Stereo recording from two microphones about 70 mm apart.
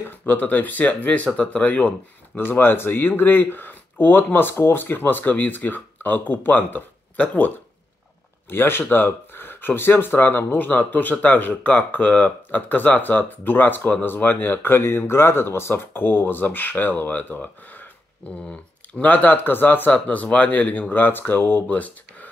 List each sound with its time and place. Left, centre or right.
0.3 s speech: left
2.4 s speech: left
8.5 s speech: left